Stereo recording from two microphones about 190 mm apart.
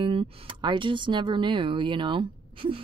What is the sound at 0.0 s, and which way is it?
A woman's voice, 30° right (ahead or behind).